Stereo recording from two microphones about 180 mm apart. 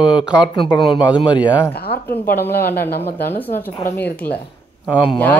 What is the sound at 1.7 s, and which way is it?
Speech, 60° left (ahead or behind).